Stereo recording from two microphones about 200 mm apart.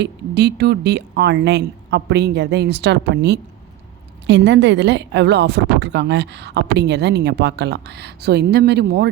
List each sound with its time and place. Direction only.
0.0 s a woman's voice: 60° right (ahead or behind)